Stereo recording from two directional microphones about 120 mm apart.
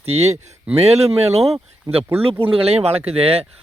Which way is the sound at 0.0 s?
60° right (ahead or behind).